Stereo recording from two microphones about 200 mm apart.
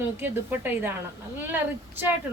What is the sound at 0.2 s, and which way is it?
Speech, 10° right (ahead or behind).